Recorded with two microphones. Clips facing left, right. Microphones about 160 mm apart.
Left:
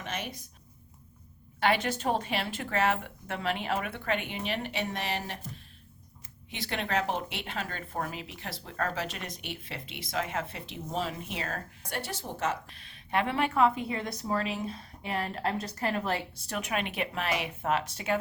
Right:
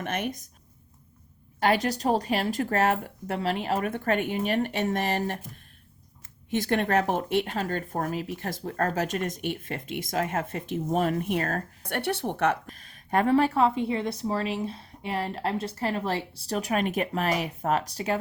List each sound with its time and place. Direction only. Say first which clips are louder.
0.0 s speech: right 7 dB; 55° right (ahead or behind)
1.5 s speech: right 3 dB; 40° right (ahead or behind)
6.5 s speech: right 8 dB; 50° right (ahead or behind); by 12.5 s 65° right (ahead or behind)
12.6 s speech: right 6 dB; 45° right (ahead or behind)